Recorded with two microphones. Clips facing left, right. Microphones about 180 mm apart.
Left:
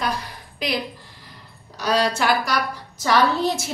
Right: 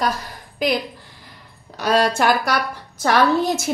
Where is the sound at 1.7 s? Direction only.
50° right (ahead or behind).